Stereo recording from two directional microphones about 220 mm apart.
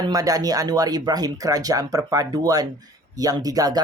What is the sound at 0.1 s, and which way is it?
Speech, 15° right (ahead or behind).